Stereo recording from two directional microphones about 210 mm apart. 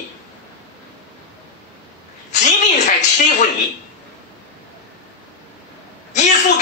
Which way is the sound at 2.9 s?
35° left (ahead or behind).